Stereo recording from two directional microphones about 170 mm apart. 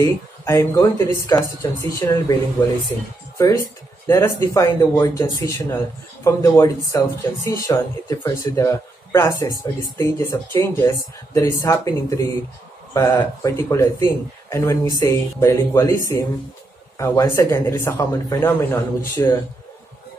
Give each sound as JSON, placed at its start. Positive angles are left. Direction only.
{"t": 0.0, "sound": "speech", "side_deg": 20}
{"t": 3.3, "sound": "speech", "side_deg": 20}
{"t": 17.0, "sound": "speech", "side_deg": 20}